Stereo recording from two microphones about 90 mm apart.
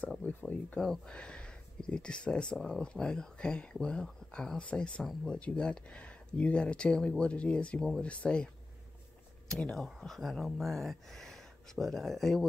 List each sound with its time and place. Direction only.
0.2 s speech: 20° left (ahead or behind)
0.7 s speech: 5° left (ahead or behind)
9.5 s speech: 5° left (ahead or behind)